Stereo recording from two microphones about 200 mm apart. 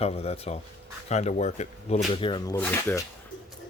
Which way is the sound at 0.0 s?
30° left (ahead or behind).